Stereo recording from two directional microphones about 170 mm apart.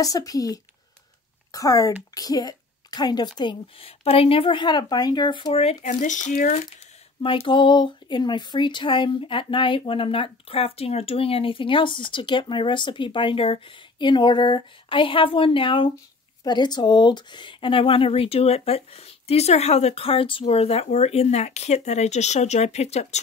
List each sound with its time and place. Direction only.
0.0 s speech: 20° left (ahead or behind); by 6.6 s 50° left (ahead or behind)
7.2 s speech: 30° left (ahead or behind)